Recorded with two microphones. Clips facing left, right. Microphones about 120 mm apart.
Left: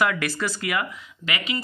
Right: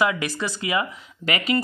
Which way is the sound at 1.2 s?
40° right (ahead or behind).